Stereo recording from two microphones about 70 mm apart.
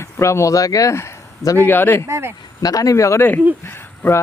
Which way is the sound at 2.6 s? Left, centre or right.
Left.